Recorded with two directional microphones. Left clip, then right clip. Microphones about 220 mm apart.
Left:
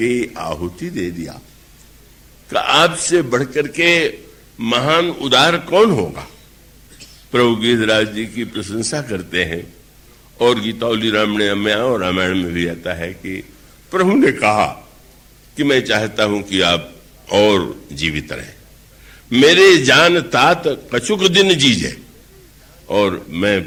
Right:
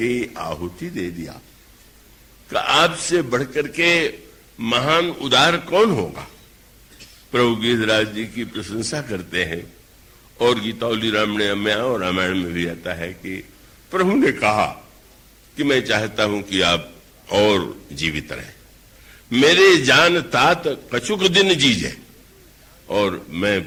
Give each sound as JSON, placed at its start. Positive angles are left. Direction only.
{"t": 0.0, "sound": "a man's voice", "side_deg": -40}
{"t": 2.5, "sound": "a man's voice", "side_deg": -40}